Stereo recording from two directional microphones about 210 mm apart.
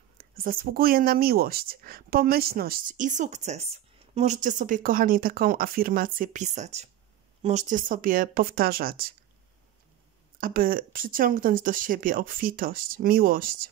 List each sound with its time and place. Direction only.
0.2 s speech: 40° right (ahead or behind)
10.4 s speech: 45° right (ahead or behind)